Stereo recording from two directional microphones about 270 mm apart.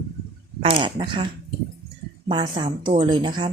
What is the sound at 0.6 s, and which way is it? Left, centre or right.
A woman's voice, centre.